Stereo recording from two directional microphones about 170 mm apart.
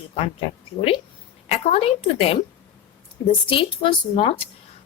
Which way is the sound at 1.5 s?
40° left (ahead or behind).